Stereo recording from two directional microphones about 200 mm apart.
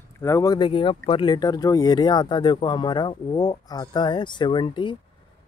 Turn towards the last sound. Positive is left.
turn(degrees=25)  # may be behind; listen again after turning